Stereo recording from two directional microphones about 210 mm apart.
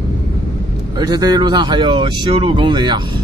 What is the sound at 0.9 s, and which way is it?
Speech, 20° right (ahead or behind).